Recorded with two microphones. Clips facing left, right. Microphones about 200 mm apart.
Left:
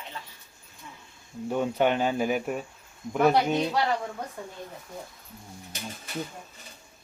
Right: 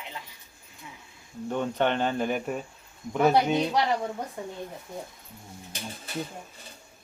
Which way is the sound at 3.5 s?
15° right (ahead or behind).